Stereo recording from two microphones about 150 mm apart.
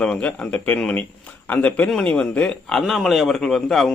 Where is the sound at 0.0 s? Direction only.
5° left (ahead or behind).